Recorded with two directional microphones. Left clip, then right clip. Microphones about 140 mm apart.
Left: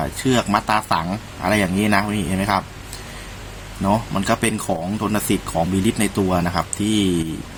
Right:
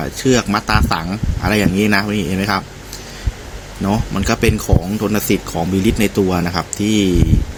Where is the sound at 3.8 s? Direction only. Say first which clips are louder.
Even; 20° right (ahead or behind).